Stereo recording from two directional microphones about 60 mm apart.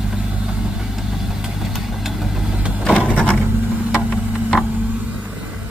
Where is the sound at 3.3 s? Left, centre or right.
Right.